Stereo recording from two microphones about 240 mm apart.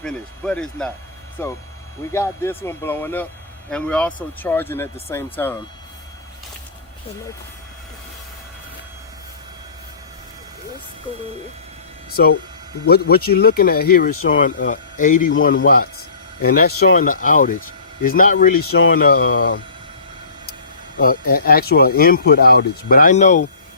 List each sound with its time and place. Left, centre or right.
0.0 s speech: centre
12.9 s speech: left
21.0 s speech: left